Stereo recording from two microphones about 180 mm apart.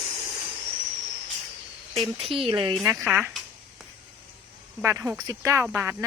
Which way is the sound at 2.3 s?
30° right (ahead or behind).